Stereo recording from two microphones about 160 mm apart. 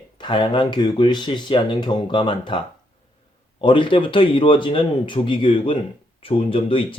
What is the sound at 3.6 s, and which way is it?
Speech, 30° left (ahead or behind).